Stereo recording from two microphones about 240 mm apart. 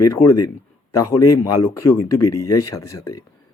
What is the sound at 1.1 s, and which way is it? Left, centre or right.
Speech, left.